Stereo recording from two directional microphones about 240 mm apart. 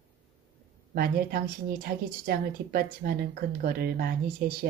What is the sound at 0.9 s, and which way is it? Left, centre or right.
A woman's voice, right.